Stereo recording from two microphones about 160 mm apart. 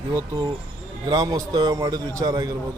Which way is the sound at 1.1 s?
25° right (ahead or behind).